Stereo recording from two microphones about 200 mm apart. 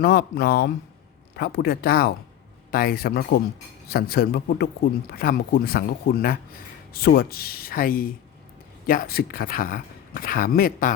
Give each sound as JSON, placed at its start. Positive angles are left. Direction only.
{"t": 0.0, "sound": "speech", "side_deg": 55}